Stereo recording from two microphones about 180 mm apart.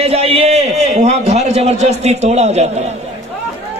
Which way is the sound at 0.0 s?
35° right (ahead or behind).